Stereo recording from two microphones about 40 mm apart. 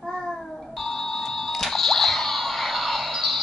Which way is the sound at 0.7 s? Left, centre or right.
Centre.